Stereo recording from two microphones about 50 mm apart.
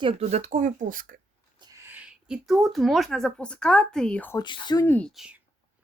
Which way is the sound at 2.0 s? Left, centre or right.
Centre.